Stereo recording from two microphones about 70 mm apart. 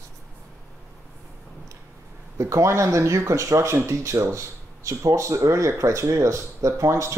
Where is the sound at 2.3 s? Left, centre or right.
Right.